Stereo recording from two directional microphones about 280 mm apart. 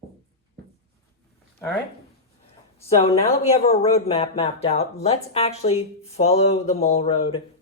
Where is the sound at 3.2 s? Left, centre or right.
Left.